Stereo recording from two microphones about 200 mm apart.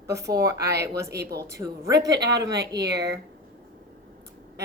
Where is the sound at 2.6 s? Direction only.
55° right (ahead or behind).